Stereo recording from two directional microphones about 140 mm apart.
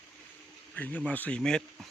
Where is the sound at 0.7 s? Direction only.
10° left (ahead or behind).